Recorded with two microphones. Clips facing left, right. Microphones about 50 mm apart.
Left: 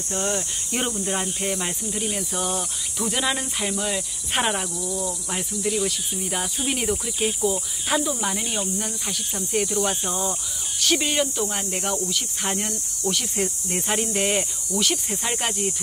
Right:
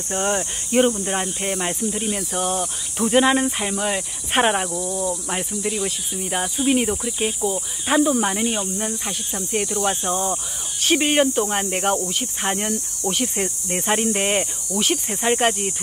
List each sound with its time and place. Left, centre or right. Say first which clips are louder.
0.1 s speech: right 4 dB; right
0.7 s speech: right 8 dB; centre
3.1 s speech: right 9 dB; right
7.9 s speech: right 6 dB; right
8.4 s speech: right 4 dB; centre
9.3 s speech: even; centre
10.1 s speech: right 4 dB; right
12.1 s speech: right 2 dB; right
12.4 s speech: right 6 dB; centre